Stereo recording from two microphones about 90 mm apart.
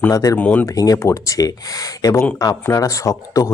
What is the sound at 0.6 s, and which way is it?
Speech, 40° left (ahead or behind).